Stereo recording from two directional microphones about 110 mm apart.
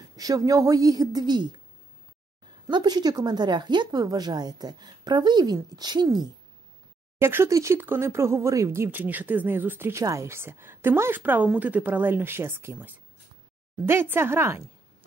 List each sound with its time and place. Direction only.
0.1 s speech: 35° right (ahead or behind)
2.7 s speech: 40° right (ahead or behind)
7.2 s speech: 20° right (ahead or behind)